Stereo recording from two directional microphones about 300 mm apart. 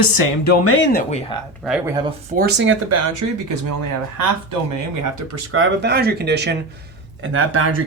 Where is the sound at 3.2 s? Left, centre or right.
Right.